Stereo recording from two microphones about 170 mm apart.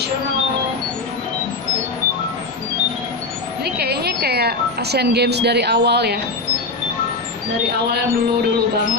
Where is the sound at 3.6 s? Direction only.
70° right (ahead or behind).